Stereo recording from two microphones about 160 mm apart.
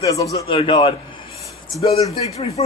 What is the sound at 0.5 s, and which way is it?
A man's voice, 35° left (ahead or behind).